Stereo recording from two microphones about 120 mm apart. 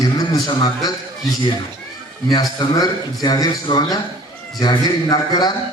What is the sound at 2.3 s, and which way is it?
A man's voice, 35° left (ahead or behind).